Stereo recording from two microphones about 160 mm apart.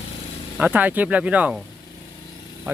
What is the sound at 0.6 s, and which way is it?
Speech, 10° right (ahead or behind).